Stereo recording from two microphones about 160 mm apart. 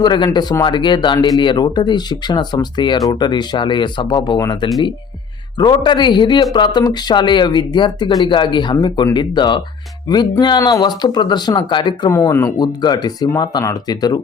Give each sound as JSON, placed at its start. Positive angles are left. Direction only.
{"t": 0.0, "sound": "a man's voice", "side_deg": 30}